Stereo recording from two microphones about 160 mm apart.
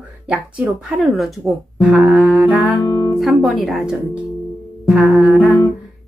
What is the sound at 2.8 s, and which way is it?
Music, 25° left (ahead or behind).